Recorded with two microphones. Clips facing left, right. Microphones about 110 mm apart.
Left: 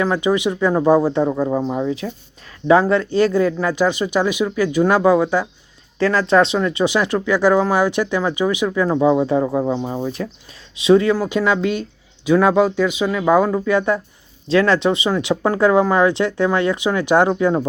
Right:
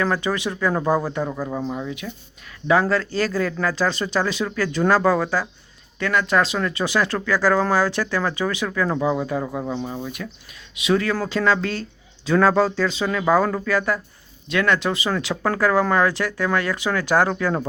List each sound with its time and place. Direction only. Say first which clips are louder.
0.0 s speech: left 5 dB; 20° left (ahead or behind)
6.0 s speech: left 5 dB; 30° left (ahead or behind)